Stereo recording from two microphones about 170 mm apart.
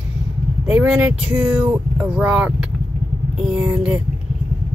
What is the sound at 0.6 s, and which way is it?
Speech, 5° right (ahead or behind).